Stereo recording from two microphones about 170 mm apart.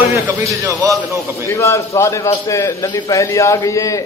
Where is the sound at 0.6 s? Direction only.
20° right (ahead or behind).